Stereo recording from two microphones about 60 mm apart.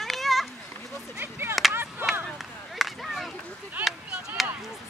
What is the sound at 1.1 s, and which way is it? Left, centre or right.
Chop, right.